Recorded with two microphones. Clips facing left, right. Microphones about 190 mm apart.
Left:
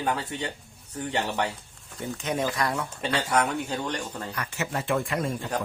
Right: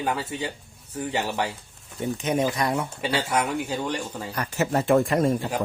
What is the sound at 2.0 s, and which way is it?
Speech, 20° right (ahead or behind).